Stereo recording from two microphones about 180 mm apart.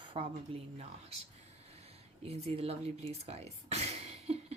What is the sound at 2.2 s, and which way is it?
Speech, 35° right (ahead or behind).